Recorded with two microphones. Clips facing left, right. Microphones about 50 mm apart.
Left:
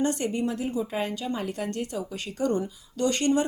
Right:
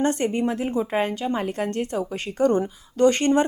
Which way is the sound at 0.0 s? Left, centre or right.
Right.